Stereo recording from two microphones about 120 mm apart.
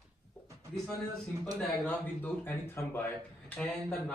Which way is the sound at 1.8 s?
15° left (ahead or behind).